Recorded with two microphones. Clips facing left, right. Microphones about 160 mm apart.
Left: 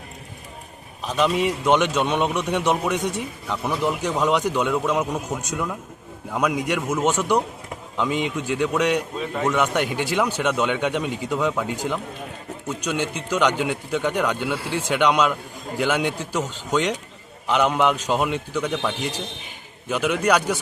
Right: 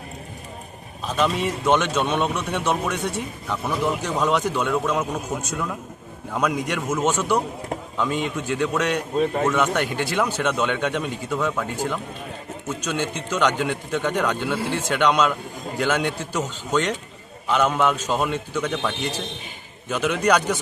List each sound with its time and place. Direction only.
1.0 s a man's voice: 15° left (ahead or behind)
9.1 s a man's voice: 45° right (ahead or behind)
9.7 s a man's voice: 15° left (ahead or behind)